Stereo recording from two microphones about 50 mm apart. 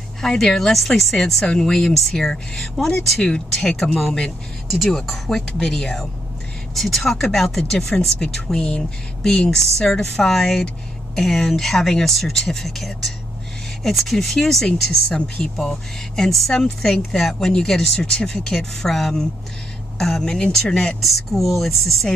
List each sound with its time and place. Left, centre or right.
0.2 s speech: centre
4.6 s speech: centre
15.0 s speech: centre
15.5 s speech: centre
21.0 s speech: centre